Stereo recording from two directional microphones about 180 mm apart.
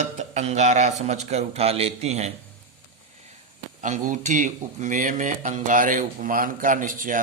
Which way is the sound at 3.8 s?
45° right (ahead or behind).